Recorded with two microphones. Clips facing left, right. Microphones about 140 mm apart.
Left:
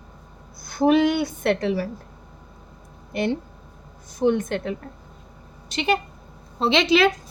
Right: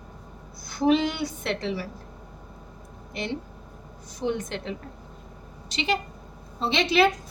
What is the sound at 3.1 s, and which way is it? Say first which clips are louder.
A woman's voice: left 7 dB; 55° left (ahead or behind).